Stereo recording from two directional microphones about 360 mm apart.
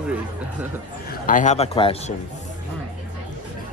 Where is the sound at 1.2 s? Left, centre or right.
Left.